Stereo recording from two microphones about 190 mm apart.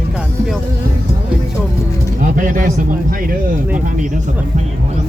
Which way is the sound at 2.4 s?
45° right (ahead or behind).